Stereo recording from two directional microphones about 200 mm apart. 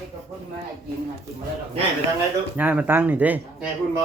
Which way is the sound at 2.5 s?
5° right (ahead or behind).